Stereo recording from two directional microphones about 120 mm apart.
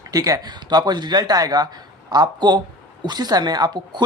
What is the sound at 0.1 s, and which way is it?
Speech, 30° right (ahead or behind).